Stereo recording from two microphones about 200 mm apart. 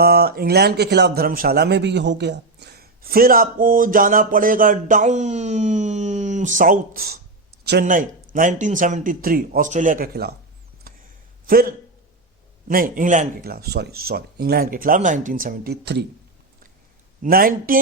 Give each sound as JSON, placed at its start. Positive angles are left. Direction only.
{"t": 0.0, "sound": "a man's voice", "side_deg": -50}
{"t": 10.9, "sound": "a sound", "side_deg": -45}
{"t": 11.4, "sound": "a man's voice", "side_deg": -45}
{"t": 17.2, "sound": "a man's voice", "side_deg": -45}